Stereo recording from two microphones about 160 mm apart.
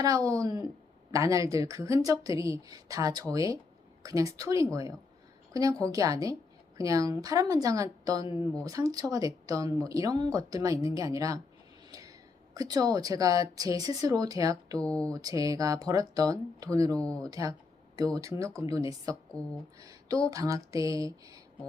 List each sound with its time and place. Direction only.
0.0 s speech: 20° right (ahead or behind)
11.9 s a sound: 20° right (ahead or behind)
12.5 s speech: 25° right (ahead or behind)
14.8 s speech: 5° left (ahead or behind)
15.1 s speech: 20° right (ahead or behind)
17.0 s speech: 5° left (ahead or behind)
17.2 s speech: 20° right (ahead or behind)